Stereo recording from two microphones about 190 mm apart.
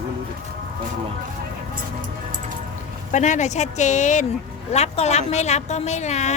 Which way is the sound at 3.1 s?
40° left (ahead or behind).